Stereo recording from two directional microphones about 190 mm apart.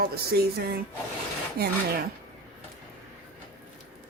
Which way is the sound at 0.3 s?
55° right (ahead or behind).